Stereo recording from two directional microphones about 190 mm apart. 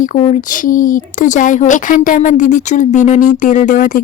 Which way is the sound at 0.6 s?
45° left (ahead or behind).